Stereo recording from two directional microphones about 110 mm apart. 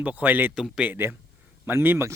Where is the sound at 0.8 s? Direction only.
20° right (ahead or behind).